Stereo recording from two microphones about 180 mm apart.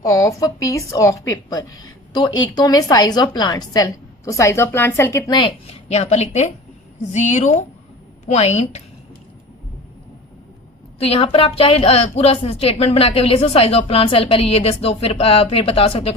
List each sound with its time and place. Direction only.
0.0 s a woman's voice: 20° left (ahead or behind); by 8.8 s 40° left (ahead or behind)
11.0 s a woman's voice: 30° left (ahead or behind)